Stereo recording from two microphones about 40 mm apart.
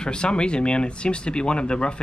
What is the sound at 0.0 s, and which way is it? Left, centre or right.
Speech, left.